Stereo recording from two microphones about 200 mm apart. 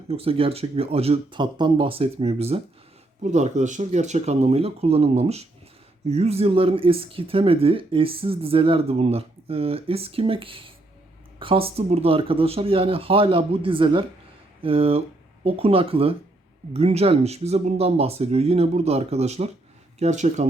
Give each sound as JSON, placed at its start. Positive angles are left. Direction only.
{"t": 0.1, "sound": "speech", "side_deg": -30}